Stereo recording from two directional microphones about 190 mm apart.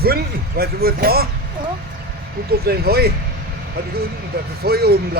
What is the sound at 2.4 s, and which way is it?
Speech, 55° right (ahead or behind).